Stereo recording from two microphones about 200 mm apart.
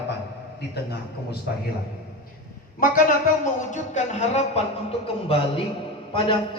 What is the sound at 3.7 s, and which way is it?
A man's voice, 35° left (ahead or behind).